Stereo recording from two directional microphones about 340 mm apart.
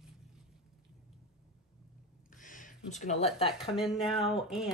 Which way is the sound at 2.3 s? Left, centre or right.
Left.